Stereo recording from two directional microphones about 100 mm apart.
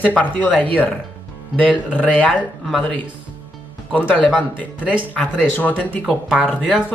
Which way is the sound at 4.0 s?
15° left (ahead or behind).